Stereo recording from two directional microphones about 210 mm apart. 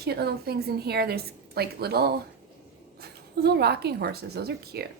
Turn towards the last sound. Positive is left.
turn(degrees=-50)  # may be behind; listen again after turning